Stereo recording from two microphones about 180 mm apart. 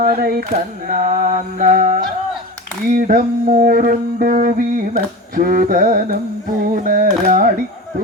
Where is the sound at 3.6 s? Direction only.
55° right (ahead or behind).